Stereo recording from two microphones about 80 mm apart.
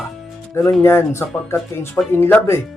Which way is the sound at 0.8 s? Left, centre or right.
Left.